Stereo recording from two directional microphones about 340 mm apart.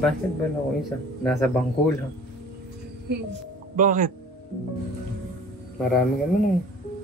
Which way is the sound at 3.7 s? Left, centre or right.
Right.